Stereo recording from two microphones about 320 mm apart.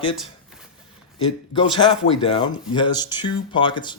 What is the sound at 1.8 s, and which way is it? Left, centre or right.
Speech, centre.